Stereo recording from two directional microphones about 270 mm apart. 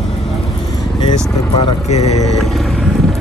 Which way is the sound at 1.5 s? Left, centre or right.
Left.